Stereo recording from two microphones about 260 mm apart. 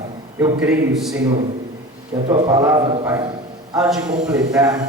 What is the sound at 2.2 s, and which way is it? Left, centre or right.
Speech, centre.